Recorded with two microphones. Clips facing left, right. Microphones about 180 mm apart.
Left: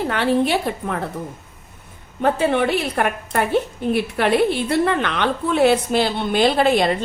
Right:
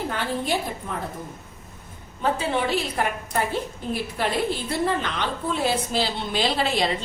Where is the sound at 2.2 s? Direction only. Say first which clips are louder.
Left 6 dB; 60° left (ahead or behind).